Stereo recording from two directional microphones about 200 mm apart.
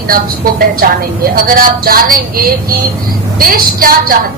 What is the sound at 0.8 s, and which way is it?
A woman's voice, 45° right (ahead or behind).